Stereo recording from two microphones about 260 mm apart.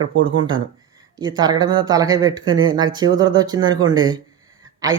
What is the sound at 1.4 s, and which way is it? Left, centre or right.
Speech, centre.